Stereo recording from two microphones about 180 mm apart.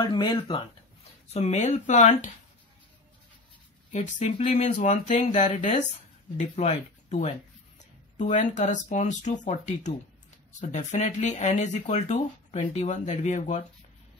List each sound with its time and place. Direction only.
0.0 s speech: 25° left (ahead or behind)
1.3 s speech: 40° left (ahead or behind)
3.9 s speech: 40° left (ahead or behind)